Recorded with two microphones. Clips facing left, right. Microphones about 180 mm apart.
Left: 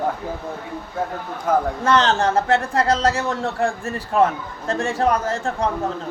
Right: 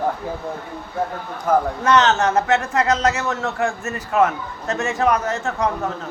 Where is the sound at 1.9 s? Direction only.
30° left (ahead or behind).